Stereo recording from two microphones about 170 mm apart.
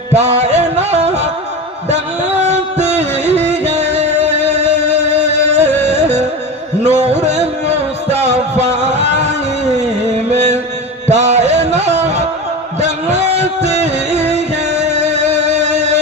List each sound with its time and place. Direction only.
0.1 s music: 40° right (ahead or behind)
2.4 s music: 40° right (ahead or behind)
8.8 s a sound: 40° right (ahead or behind)
10.3 s music: 40° right (ahead or behind)